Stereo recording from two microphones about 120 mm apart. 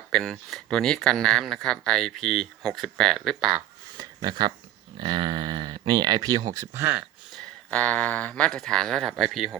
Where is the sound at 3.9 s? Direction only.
35° right (ahead or behind).